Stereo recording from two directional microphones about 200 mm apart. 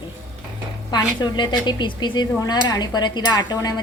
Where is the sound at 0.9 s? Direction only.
20° left (ahead or behind).